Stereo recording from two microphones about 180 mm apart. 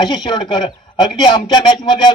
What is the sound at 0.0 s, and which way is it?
A man's voice, 25° left (ahead or behind).